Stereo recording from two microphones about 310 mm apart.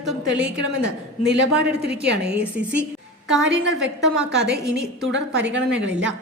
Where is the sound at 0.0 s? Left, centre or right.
Centre.